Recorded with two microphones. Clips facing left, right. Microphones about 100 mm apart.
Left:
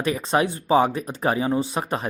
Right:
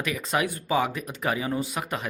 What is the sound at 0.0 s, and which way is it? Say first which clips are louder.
Speech: left 5 dB; 35° left (ahead or behind).